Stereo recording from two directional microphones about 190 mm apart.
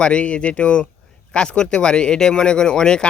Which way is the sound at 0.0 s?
5° left (ahead or behind).